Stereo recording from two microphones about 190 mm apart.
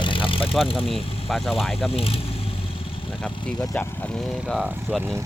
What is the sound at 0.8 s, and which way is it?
Speech, centre (ahead or behind).